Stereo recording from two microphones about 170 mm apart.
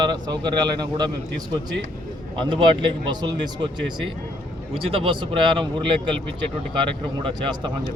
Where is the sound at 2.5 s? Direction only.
30° right (ahead or behind).